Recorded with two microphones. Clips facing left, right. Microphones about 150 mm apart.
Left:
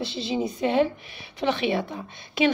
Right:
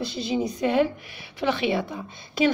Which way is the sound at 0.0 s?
30° left (ahead or behind).